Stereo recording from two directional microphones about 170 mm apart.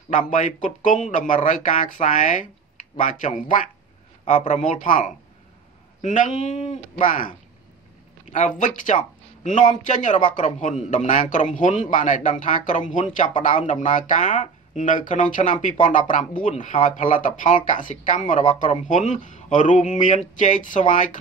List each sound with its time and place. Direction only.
0.3 s a man's voice: 50° left (ahead or behind)